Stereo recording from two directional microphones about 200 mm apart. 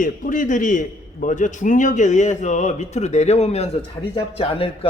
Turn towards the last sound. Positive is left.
turn(degrees=30)  # may be behind; listen again after turning